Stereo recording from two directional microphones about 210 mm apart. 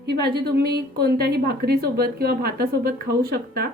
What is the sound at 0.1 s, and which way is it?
A woman's voice, 50° right (ahead or behind).